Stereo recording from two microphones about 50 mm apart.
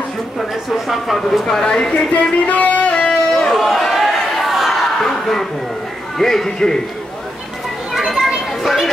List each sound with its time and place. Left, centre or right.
0.4 s a man's voice: centre
2.1 s music: left
3.4 s chatter: centre
5.0 s a sound: centre
6.1 s a man's voice: centre
8.6 s speech: centre